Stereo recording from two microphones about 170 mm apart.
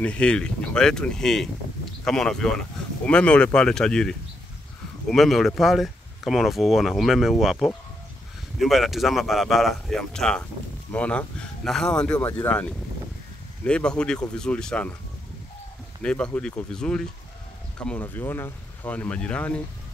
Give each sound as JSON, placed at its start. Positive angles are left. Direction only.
{"t": 0.0, "sound": "speech", "side_deg": 5}
{"t": 16.0, "sound": "speech", "side_deg": 5}